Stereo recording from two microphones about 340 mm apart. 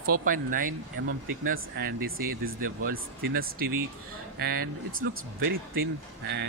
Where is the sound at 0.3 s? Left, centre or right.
Right.